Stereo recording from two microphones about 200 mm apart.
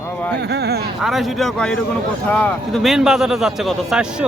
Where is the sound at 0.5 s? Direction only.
55° right (ahead or behind).